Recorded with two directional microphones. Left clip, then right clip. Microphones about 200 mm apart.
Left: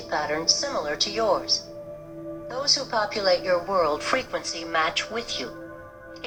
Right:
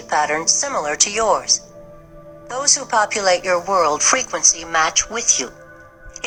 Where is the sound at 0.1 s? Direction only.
45° right (ahead or behind).